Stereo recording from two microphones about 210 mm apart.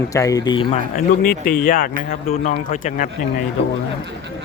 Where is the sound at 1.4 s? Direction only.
40° left (ahead or behind).